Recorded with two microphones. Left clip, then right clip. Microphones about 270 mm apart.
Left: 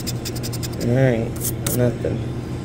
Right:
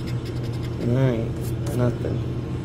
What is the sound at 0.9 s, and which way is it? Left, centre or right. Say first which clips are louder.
Speech: left 6 dB; centre.